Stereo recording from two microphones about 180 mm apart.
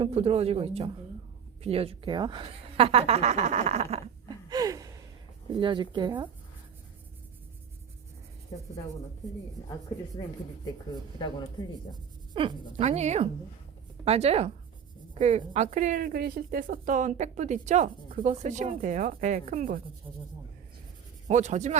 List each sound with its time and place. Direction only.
0.0 s a woman's voice: 35° right (ahead or behind)
4.3 s gasp: 20° right (ahead or behind)
5.5 s speech: 25° right (ahead or behind)
9.6 s rub: 15° left (ahead or behind)
12.3 s a woman's voice: 30° right (ahead or behind); by 19.8 s 50° right (ahead or behind)
21.2 s a woman's voice: 40° right (ahead or behind)